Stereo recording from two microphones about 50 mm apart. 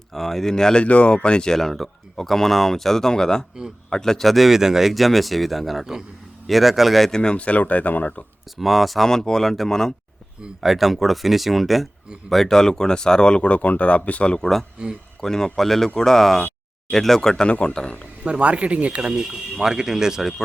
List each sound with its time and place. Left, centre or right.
0.1 s speech: centre
0.9 s speech: left; by 7.1 s centre
7.1 s speech: centre
8.5 s speech: centre
10.6 s speech: centre
17.5 s speech: left
18.3 s speech: right
19.6 s speech: centre